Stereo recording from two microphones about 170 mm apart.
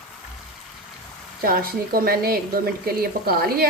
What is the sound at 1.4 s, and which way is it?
Speech, 60° right (ahead or behind).